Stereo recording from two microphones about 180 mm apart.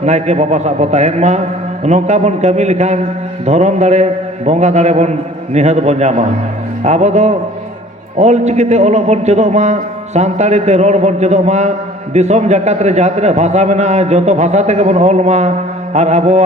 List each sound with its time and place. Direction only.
0.0 s a man's voice: 40° right (ahead or behind)